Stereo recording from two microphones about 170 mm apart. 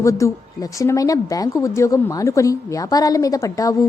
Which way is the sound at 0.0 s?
15° left (ahead or behind).